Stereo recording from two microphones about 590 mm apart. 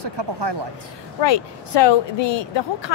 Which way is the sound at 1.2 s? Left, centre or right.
Left.